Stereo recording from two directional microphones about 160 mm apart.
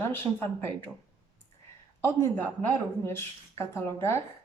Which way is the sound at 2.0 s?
10° left (ahead or behind).